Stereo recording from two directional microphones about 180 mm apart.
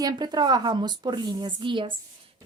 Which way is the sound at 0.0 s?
25° right (ahead or behind).